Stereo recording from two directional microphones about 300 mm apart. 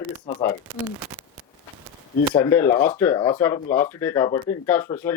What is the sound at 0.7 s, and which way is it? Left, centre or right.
Speech, centre.